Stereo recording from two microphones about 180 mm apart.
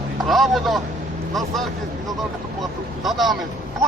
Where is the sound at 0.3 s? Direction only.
Centre (ahead or behind).